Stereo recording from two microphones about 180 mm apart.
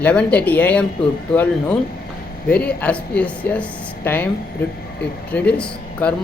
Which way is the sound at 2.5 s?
5° left (ahead or behind).